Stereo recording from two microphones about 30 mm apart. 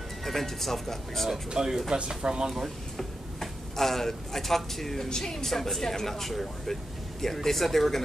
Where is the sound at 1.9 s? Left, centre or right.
Right.